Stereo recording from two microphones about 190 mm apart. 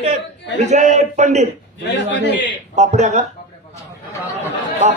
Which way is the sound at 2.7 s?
35° right (ahead or behind).